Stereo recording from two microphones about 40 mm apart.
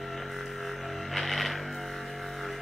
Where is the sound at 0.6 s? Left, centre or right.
Centre.